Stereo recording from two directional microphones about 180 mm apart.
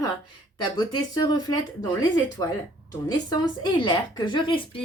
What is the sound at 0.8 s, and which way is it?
Speech, 20° left (ahead or behind).